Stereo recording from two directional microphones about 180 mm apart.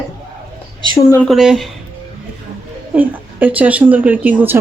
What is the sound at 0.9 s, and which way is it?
Speech, 20° left (ahead or behind).